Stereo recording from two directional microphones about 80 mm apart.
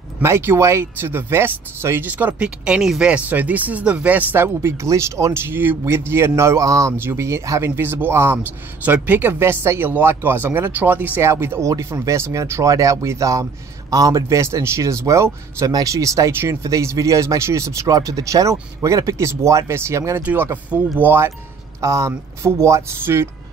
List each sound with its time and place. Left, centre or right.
0.2 s speech: right
11.7 s speech: right
20.7 s speech: right
21.8 s speech: right